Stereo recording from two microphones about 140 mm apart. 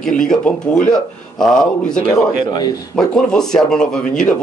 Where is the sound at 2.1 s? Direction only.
30° left (ahead or behind).